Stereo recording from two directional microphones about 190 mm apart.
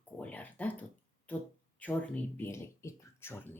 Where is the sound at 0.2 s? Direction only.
5° left (ahead or behind).